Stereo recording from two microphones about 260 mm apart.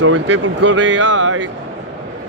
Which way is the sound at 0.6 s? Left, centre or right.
Right.